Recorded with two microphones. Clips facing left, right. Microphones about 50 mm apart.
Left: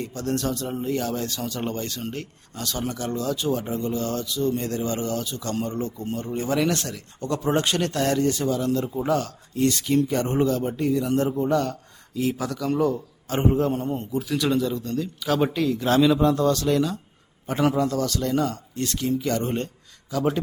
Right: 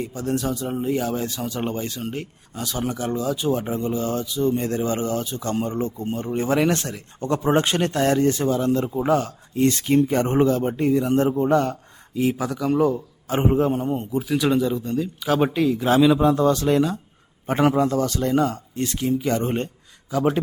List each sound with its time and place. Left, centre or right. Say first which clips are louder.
0.0 s speech: right 2 dB; centre